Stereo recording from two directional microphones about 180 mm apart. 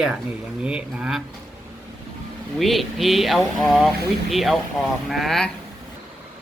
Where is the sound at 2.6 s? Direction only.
Centre (ahead or behind).